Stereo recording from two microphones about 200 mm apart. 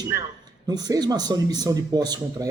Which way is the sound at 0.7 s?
20° right (ahead or behind).